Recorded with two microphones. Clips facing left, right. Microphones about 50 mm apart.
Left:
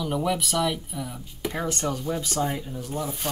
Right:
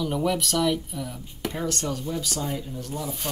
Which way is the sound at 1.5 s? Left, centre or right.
Centre.